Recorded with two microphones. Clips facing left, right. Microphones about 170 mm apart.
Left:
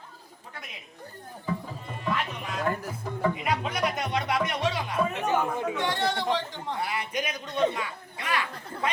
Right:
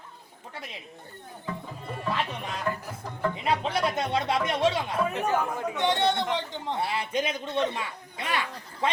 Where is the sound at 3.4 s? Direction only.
30° right (ahead or behind).